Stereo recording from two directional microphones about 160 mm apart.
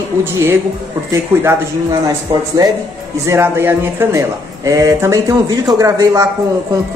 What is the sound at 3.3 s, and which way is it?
Speech, 15° right (ahead or behind).